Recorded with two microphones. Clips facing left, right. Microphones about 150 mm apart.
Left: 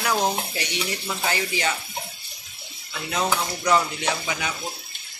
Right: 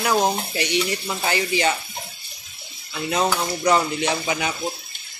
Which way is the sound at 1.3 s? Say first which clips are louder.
Right 5 dB; 30° right (ahead or behind).